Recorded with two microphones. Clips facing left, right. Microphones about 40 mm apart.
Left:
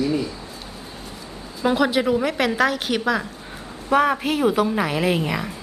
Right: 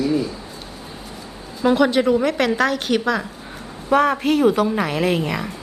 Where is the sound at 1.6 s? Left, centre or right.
Centre.